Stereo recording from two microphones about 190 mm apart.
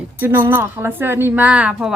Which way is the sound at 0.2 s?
10° right (ahead or behind).